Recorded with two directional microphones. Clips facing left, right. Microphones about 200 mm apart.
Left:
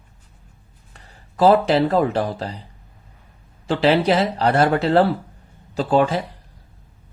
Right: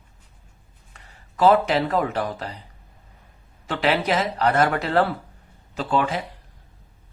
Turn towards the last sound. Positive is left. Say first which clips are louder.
# left 5 dB
turn(degrees=40)  # may be behind; listen again after turning